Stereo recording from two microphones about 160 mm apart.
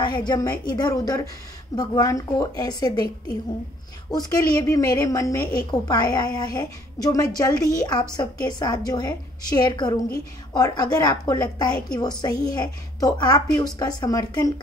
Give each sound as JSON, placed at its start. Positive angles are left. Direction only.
{"t": 0.0, "sound": "a woman's voice", "side_deg": 25}
{"t": 4.1, "sound": "a woman's voice", "side_deg": 25}